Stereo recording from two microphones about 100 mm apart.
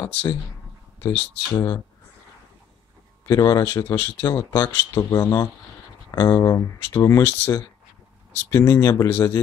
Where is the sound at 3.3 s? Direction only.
35° left (ahead or behind).